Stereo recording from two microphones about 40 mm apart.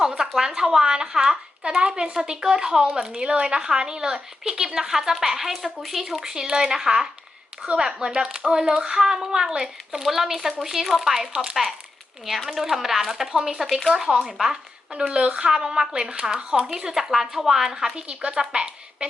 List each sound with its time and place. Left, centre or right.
0.0 s a woman's voice: centre
12.5 s a woman's voice: centre
13.9 s a woman's voice: centre
14.9 s speech: right
15.4 s a woman's voice: centre
17.9 s speech: right